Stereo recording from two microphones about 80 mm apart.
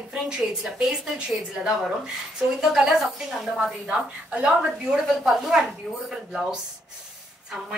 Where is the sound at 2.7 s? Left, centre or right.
Centre.